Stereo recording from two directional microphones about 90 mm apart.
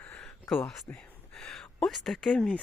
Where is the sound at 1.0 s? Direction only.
5° left (ahead or behind).